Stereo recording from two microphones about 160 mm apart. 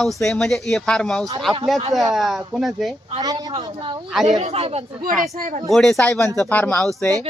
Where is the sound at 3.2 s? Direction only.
25° right (ahead or behind).